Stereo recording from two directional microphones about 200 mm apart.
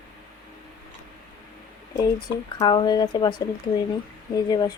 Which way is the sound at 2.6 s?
20° left (ahead or behind).